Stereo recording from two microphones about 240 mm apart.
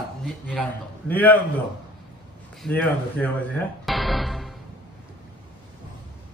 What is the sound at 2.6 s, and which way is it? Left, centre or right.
Speech, centre.